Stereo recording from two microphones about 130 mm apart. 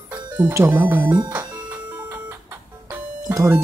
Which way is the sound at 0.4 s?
15° right (ahead or behind).